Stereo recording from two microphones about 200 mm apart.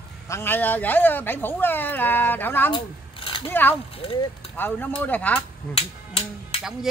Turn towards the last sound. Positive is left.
turn(degrees=30)  # may be behind; listen again after turning